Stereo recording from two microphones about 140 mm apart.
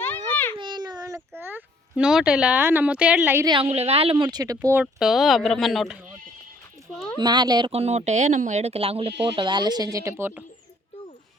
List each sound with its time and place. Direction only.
0.6 s a child's voice: 30° right (ahead or behind); by 3.4 s 10° right (ahead or behind)
3.4 s speech: 35° right (ahead or behind)
3.7 s speech: 45° right (ahead or behind); by 4.7 s 25° right (ahead or behind)
4.7 s speech: 5° right (ahead or behind)
7.2 s speech: 30° right (ahead or behind)
7.7 s speech: 50° right (ahead or behind); by 10.4 s 15° right (ahead or behind)